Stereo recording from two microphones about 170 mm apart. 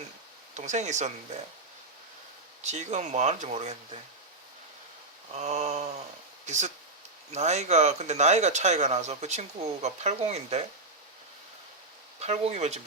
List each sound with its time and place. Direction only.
0.5 s speech: 45° right (ahead or behind)
2.6 s speech: 45° right (ahead or behind)
5.3 s speech: 40° right (ahead or behind)
12.2 s speech: 40° right (ahead or behind)